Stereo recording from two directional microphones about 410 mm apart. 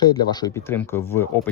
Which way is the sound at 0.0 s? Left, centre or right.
Centre.